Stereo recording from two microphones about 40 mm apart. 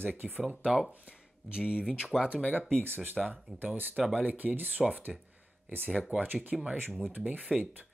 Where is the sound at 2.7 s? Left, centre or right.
Right.